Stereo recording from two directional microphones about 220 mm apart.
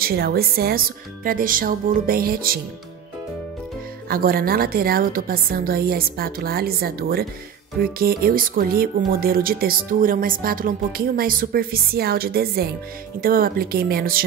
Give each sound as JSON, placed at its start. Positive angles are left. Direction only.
{"t": 0.0, "sound": "speech", "side_deg": -45}
{"t": 4.1, "sound": "speech", "side_deg": -40}